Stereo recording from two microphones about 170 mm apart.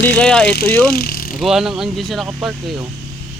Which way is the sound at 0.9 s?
65° left (ahead or behind).